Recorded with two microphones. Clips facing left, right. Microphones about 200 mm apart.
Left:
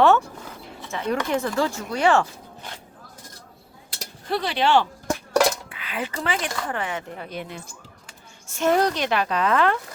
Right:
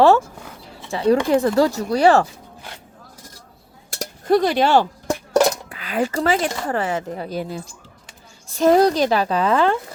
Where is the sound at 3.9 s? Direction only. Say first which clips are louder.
Right 10 dB; 45° right (ahead or behind).